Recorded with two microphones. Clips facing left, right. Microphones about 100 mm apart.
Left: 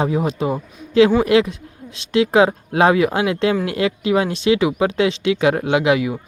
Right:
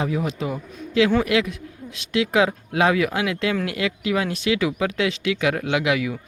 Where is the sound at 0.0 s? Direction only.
30° left (ahead or behind).